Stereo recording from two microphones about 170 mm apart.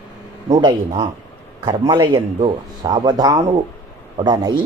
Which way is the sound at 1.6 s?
30° right (ahead or behind).